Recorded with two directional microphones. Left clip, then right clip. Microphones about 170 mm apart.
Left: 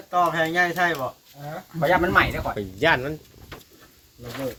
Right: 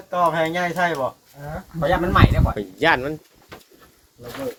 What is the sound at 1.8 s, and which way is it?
Speech, 10° right (ahead or behind).